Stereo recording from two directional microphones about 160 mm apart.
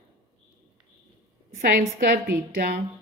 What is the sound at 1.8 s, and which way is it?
A woman's voice, 65° right (ahead or behind).